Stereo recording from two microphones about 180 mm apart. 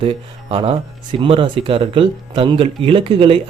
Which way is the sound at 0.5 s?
30° right (ahead or behind).